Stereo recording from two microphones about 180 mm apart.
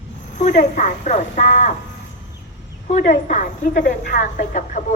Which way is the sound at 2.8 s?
45° left (ahead or behind).